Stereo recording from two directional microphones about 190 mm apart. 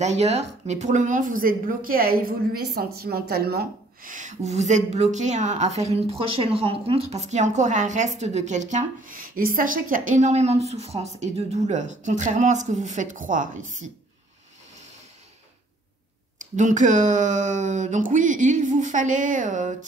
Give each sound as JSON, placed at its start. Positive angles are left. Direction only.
{"t": 0.0, "sound": "speech", "side_deg": -35}
{"t": 16.3, "sound": "speech", "side_deg": -40}